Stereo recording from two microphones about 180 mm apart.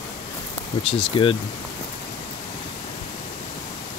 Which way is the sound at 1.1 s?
30° left (ahead or behind).